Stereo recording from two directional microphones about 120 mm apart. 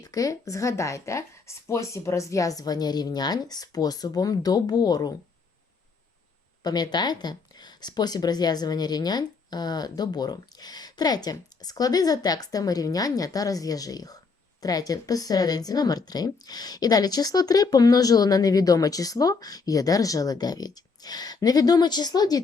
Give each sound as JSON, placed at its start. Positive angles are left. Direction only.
{"t": 0.0, "sound": "speech", "side_deg": 30}
{"t": 6.6, "sound": "speech", "side_deg": 35}